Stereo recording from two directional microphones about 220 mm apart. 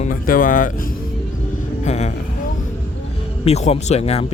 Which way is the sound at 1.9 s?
30° left (ahead or behind).